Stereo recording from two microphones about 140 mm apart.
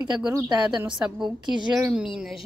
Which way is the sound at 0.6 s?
5° right (ahead or behind).